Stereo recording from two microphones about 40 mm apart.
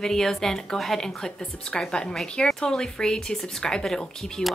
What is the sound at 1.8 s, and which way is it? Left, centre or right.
A woman's voice, centre.